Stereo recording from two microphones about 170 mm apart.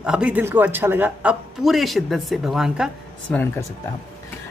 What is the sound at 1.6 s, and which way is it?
Speech, centre (ahead or behind).